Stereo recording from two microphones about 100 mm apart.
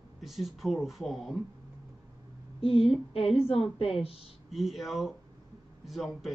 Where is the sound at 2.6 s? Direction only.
75° left (ahead or behind).